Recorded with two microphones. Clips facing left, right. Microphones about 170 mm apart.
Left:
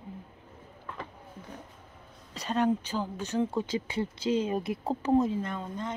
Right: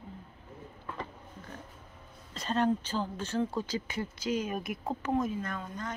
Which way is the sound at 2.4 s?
10° left (ahead or behind).